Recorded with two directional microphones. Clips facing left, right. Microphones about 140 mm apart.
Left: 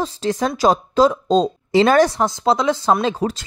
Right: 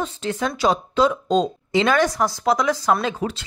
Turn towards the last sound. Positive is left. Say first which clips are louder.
# left 4 dB
turn(degrees=40)  # may be behind; listen again after turning